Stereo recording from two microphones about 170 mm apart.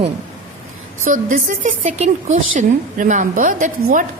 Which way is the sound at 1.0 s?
50° right (ahead or behind).